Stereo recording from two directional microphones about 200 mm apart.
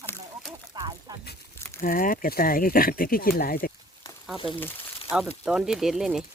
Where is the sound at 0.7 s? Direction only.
20° right (ahead or behind).